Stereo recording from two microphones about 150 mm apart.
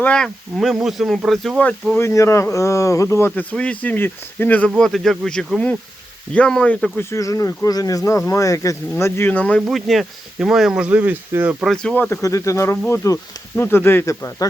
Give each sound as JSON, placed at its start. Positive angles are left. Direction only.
{"t": 0.0, "sound": "speech", "side_deg": 5}
{"t": 11.6, "sound": "speech", "side_deg": 5}